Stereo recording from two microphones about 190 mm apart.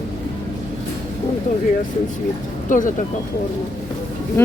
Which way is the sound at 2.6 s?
45° left (ahead or behind).